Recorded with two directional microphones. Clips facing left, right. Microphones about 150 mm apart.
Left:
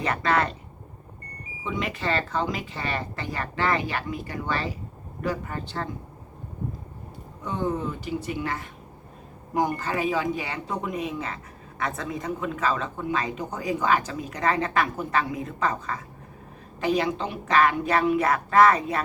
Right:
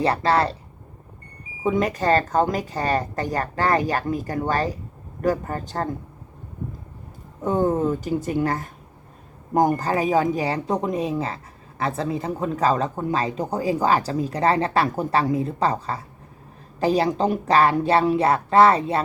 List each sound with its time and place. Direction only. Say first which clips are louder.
0.0 s speech: right 4 dB; 35° right (ahead or behind)
1.6 s a woman's voice: right 8 dB; 45° right (ahead or behind)
7.4 s a woman's voice: right 7 dB; 45° right (ahead or behind); by 19.0 s 30° right (ahead or behind)